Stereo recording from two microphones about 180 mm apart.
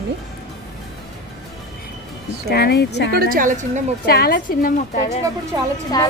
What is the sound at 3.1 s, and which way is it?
Speech, 55° right (ahead or behind).